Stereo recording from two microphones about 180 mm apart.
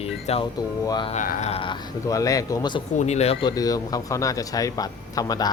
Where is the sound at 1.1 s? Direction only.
40° left (ahead or behind); by 2.8 s 20° left (ahead or behind).